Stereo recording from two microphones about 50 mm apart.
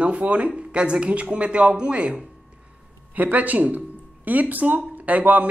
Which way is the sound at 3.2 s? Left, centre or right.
Right.